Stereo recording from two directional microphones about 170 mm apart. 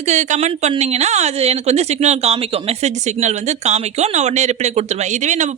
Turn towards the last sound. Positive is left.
turn(degrees=-45)  # may be behind; listen again after turning